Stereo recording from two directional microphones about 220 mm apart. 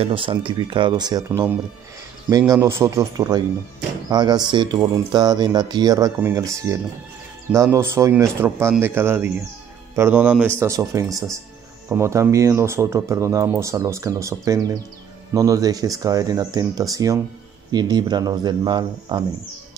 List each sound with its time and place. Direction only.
0.0 s speech: 25° right (ahead or behind)